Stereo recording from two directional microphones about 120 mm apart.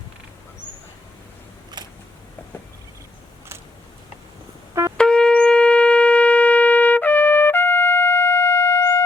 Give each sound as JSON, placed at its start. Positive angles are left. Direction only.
{"t": 1.8, "sound": "a sound", "side_deg": -40}
{"t": 4.7, "sound": "brass instrument", "side_deg": -25}
{"t": 4.9, "sound": "shofar", "side_deg": 10}